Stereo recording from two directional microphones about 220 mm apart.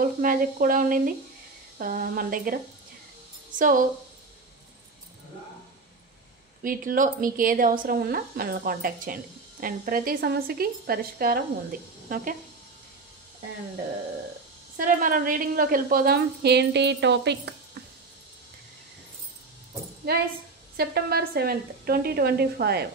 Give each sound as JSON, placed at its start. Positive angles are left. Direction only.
{"t": 0.2, "sound": "a woman's voice", "side_deg": -40}
{"t": 6.6, "sound": "a woman's voice", "side_deg": -40}
{"t": 14.8, "sound": "a woman's voice", "side_deg": -40}
{"t": 20.1, "sound": "a woman's voice", "side_deg": -45}